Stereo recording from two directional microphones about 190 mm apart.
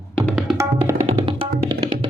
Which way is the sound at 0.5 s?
15° right (ahead or behind).